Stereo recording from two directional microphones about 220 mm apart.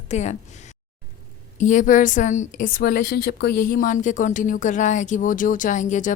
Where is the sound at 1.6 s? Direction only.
35° left (ahead or behind).